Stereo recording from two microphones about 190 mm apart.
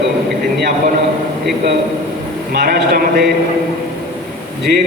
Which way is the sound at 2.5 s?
50° right (ahead or behind).